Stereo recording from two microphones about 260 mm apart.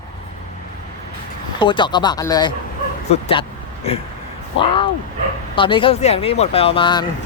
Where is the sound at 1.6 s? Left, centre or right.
Centre.